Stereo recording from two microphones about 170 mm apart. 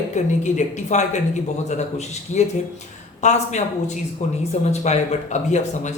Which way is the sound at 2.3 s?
45° left (ahead or behind).